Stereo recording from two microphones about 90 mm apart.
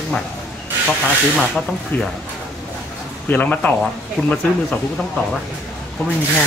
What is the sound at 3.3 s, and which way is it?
Speech, 15° left (ahead or behind).